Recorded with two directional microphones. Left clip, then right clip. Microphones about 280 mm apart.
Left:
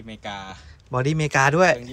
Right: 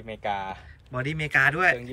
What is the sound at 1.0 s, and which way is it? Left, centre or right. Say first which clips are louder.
Speech: left 3 dB; centre.